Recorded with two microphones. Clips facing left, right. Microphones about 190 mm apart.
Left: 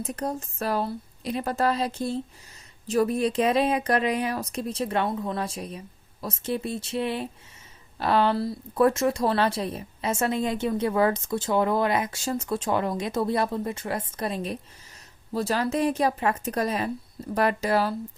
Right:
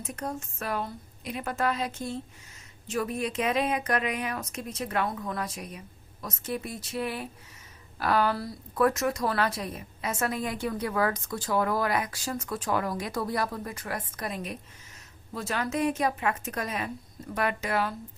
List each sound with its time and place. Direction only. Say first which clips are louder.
0.0 s speech: left 5 dB; 35° left (ahead or behind)